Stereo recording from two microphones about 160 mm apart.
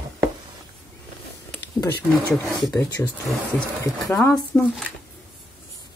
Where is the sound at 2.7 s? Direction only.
20° left (ahead or behind).